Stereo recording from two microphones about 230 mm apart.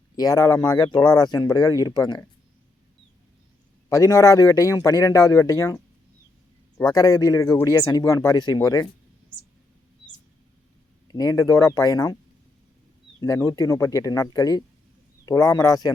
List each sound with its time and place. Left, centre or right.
0.2 s speech: centre
3.8 s speech: centre
11.1 s speech: centre
13.1 s speech: centre